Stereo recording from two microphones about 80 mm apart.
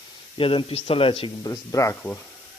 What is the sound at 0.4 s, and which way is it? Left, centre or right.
Speech, left.